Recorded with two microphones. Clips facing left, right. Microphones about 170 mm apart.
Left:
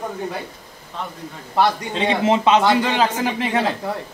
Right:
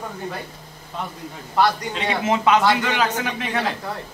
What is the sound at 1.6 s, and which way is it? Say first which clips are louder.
A man's voice: left 2 dB; 25° left (ahead or behind).